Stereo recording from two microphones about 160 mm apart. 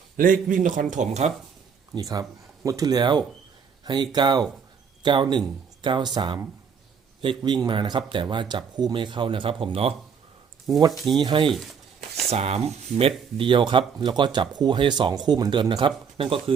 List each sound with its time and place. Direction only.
0.2 s speech: 60° right (ahead or behind)
1.9 s speech: 20° right (ahead or behind)
11.2 s speech: 30° right (ahead or behind)
11.4 s a sound: centre (ahead or behind)
12.3 s speech: 40° right (ahead or behind)